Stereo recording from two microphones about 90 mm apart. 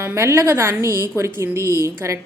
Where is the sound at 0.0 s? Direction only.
30° right (ahead or behind).